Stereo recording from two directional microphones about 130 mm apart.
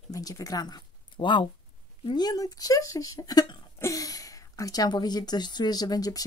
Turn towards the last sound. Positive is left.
turn(degrees=30)  # may be behind; listen again after turning